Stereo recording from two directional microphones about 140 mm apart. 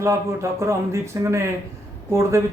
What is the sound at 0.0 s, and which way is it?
Speech, 20° right (ahead or behind).